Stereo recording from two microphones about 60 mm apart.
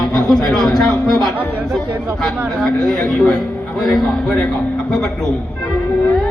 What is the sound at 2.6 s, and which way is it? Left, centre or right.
A man's voice, centre.